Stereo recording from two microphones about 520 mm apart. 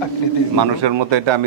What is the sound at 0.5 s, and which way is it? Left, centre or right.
Speech, right.